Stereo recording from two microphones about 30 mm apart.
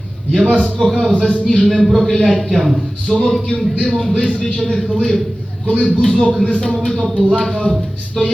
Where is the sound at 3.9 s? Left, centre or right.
Centre.